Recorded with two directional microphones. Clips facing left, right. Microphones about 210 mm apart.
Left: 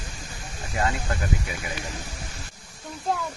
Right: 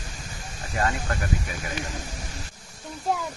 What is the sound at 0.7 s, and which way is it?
Speech, 15° left (ahead or behind).